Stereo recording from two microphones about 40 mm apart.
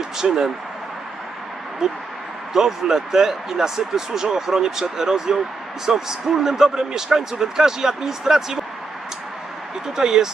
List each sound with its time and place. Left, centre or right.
0.2 s speech: centre
1.8 s speech: centre
9.8 s speech: centre